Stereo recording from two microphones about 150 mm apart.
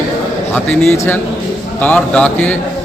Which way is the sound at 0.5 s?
10° left (ahead or behind).